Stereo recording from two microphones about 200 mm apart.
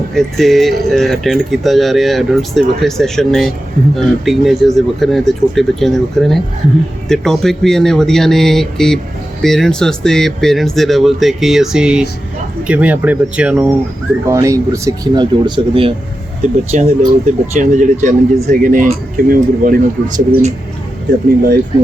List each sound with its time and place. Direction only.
0.1 s speech: centre (ahead or behind); by 20.5 s 40° right (ahead or behind)